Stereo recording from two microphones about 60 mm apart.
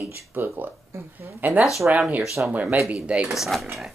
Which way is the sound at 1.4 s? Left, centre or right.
Right.